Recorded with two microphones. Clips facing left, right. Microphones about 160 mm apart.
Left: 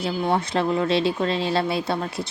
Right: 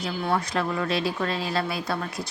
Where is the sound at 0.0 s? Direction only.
25° left (ahead or behind).